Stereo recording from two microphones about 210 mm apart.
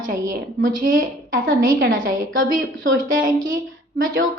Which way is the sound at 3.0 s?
45° right (ahead or behind).